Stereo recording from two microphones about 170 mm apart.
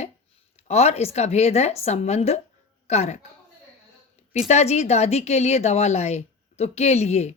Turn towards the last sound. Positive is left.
turn(degrees=40)  # may be behind; listen again after turning